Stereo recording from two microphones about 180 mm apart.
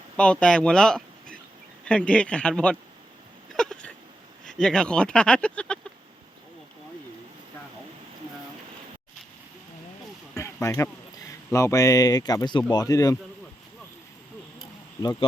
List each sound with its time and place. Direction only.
0.2 s speech: 5° left (ahead or behind)
3.5 s hiccup: 5° left (ahead or behind)
4.4 s speech: 5° left (ahead or behind)
10.3 s a sound: 15° left (ahead or behind)
11.3 s speech: 15° left (ahead or behind)